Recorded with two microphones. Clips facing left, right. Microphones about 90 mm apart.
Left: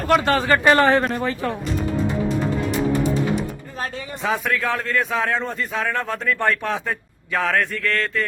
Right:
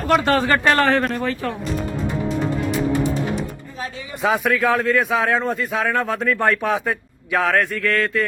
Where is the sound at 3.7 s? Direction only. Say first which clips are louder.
Left 2 dB; 55° left (ahead or behind).